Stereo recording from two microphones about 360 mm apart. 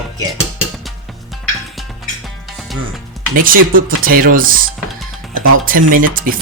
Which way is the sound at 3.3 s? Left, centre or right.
Right.